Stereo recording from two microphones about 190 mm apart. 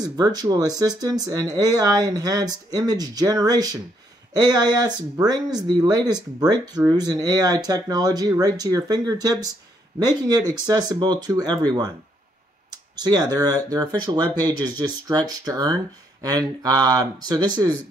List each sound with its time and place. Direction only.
0.0 s speech: 20° right (ahead or behind)
12.9 s speech: 20° right (ahead or behind)